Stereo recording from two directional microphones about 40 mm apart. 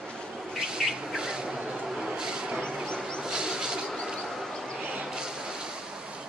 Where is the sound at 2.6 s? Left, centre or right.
Left.